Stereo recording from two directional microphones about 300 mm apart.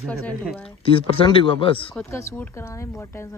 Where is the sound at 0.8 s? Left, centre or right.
Centre.